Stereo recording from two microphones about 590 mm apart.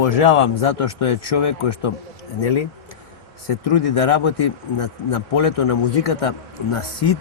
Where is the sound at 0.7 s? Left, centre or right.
Left.